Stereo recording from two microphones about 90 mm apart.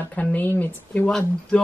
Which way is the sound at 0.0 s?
15° left (ahead or behind).